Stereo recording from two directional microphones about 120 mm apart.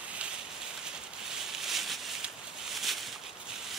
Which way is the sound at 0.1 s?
10° right (ahead or behind).